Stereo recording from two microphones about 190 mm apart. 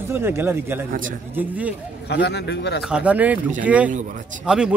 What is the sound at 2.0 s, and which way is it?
Speech, 60° left (ahead or behind).